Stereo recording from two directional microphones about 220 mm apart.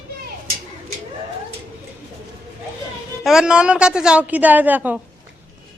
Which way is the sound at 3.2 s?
Centre (ahead or behind).